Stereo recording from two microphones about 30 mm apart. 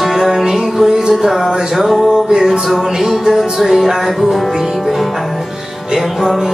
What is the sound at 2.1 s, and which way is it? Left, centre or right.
Music, right.